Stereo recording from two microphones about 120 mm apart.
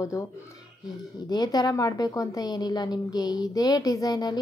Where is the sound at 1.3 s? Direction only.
35° left (ahead or behind).